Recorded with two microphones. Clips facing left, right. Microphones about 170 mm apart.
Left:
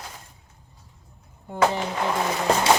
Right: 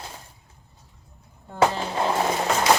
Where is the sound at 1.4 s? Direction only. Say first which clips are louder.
Right 1 dB; 15° left (ahead or behind).